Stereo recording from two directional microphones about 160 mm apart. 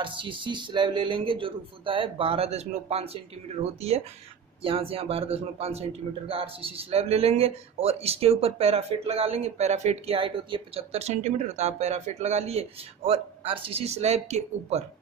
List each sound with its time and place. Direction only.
0.0 s speech: 30° right (ahead or behind)